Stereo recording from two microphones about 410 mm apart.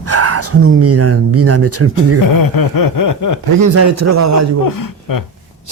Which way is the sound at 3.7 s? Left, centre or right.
Right.